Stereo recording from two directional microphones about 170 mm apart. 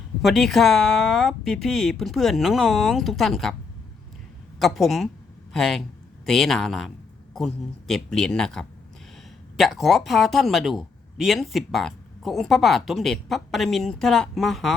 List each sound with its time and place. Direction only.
0.2 s speech: centre (ahead or behind)
4.6 s speech: centre (ahead or behind)